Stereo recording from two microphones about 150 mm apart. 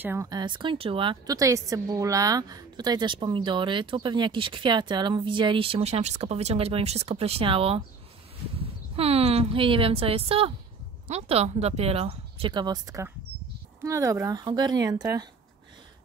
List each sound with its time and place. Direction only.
0.0 s a woman's voice: 20° right (ahead or behind)